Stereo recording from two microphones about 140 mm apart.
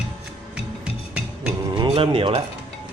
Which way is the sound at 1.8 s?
40° right (ahead or behind).